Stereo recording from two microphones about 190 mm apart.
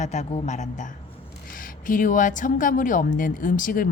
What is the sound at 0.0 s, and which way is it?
A man's voice, 35° left (ahead or behind).